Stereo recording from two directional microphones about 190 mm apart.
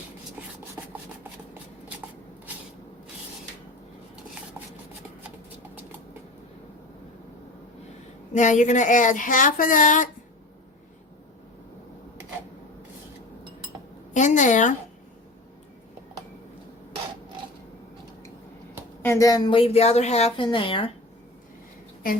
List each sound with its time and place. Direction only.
0.8 s rub: 10° right (ahead or behind)
8.3 s speech: 40° left (ahead or behind)
14.1 s a sound: 40° left (ahead or behind)
19.0 s a woman's voice: 15° left (ahead or behind)